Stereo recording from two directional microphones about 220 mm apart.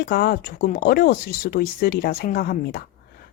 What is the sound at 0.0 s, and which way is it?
Speech, 45° left (ahead or behind).